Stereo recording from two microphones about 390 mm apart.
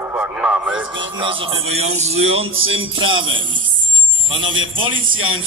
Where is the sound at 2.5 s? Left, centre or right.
Right.